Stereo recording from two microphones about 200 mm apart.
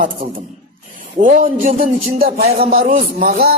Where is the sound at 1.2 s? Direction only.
40° right (ahead or behind).